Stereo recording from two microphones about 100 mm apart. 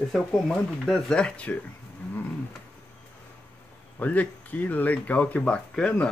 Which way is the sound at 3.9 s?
15° left (ahead or behind).